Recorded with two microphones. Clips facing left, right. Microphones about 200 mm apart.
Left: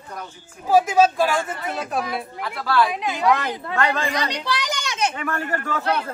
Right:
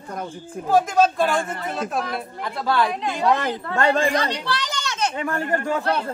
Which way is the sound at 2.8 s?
5° left (ahead or behind).